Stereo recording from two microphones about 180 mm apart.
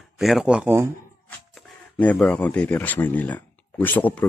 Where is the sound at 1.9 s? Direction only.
5° left (ahead or behind).